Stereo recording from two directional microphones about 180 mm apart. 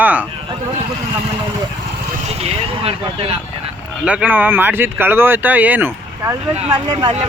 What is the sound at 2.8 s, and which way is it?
Speech, 35° right (ahead or behind).